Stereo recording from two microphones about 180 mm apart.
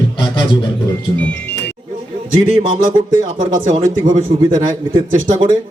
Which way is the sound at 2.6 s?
25° right (ahead or behind).